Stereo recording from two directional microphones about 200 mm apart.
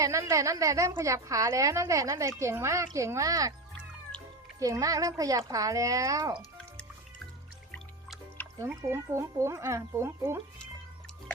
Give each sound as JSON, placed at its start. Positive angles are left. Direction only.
{"t": 0.0, "sound": "a woman's voice", "side_deg": -15}
{"t": 4.6, "sound": "a woman's voice", "side_deg": -15}
{"t": 8.7, "sound": "a woman's voice", "side_deg": -15}